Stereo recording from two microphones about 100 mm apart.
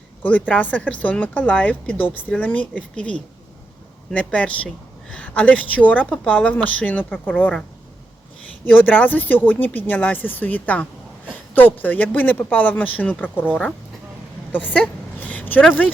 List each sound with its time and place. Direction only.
0.2 s speech: 15° left (ahead or behind)
8.8 s speech: 15° left (ahead or behind)
14.5 s a sound: 15° left (ahead or behind)